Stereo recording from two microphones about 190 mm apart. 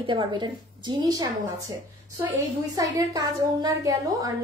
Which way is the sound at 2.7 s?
20° right (ahead or behind).